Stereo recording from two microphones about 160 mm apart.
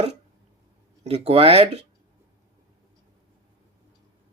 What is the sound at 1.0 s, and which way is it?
Speech, 40° right (ahead or behind).